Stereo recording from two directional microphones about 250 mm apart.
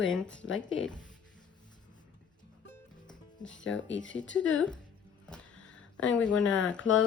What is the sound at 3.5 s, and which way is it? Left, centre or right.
Speech, left.